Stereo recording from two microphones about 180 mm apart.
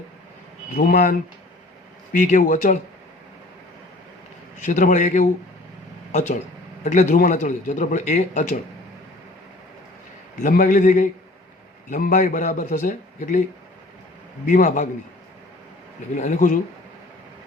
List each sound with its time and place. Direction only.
0.9 s a man's voice: 55° left (ahead or behind)
2.1 s a man's voice: 45° left (ahead or behind)
4.6 s a man's voice: 45° left (ahead or behind)
10.4 s a man's voice: 45° left (ahead or behind)
14.4 s a man's voice: 45° left (ahead or behind)
16.1 s a man's voice: 45° left (ahead or behind)